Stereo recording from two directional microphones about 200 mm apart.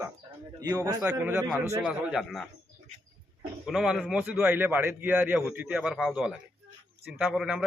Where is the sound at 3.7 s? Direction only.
Centre (ahead or behind).